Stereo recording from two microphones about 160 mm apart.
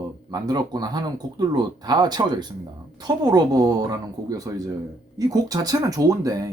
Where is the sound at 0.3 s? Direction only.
25° right (ahead or behind).